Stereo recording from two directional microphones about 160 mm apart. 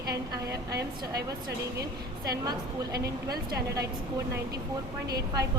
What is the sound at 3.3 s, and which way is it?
Speech, 85° right.